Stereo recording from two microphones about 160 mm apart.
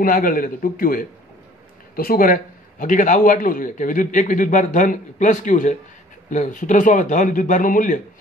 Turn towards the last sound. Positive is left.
turn(degrees=55)  # may be behind; listen again after turning